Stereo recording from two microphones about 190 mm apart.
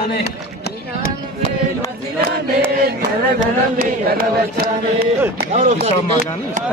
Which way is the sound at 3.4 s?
50° right (ahead or behind).